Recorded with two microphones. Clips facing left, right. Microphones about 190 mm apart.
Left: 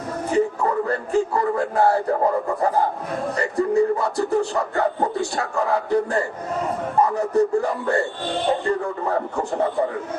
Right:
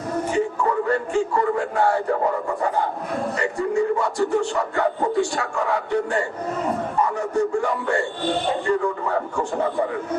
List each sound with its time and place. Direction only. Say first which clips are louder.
0.3 s a sound: left 3 dB; 35° left (ahead or behind)
7.0 s speech: left 4 dB; 35° left (ahead or behind)
9.0 s speech: left 1 dB; 35° left (ahead or behind)